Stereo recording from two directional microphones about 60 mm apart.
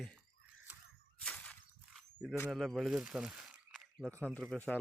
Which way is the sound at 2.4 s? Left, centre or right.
Centre.